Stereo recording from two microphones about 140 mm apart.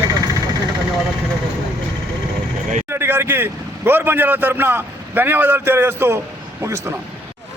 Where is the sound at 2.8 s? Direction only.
15° right (ahead or behind).